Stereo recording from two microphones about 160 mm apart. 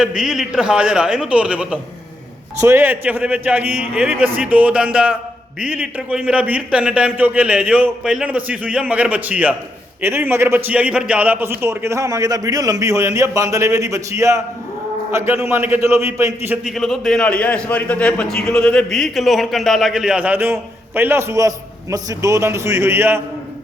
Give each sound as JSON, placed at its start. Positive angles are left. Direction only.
{"t": 0.0, "sound": "a man's voice", "side_deg": -5}
{"t": 16.6, "sound": "a man's voice", "side_deg": 0}